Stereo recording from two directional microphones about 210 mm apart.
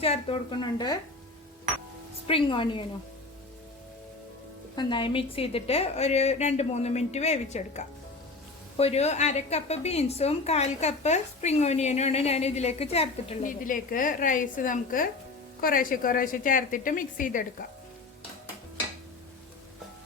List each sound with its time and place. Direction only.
0.0 s a woman's voice: 25° left (ahead or behind)
2.2 s a woman's voice: 25° left (ahead or behind)
4.7 s a woman's voice: 20° left (ahead or behind); by 17.4 s 40° left (ahead or behind)